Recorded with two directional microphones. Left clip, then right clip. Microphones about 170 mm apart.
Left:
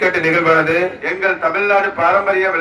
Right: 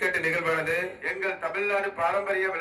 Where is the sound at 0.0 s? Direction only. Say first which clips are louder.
Left 12 dB; 10° left (ahead or behind).